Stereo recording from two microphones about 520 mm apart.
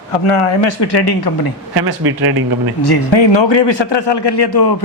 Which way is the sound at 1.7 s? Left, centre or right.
Right.